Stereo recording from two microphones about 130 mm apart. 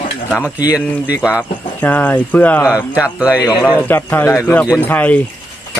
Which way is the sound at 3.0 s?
10° right (ahead or behind).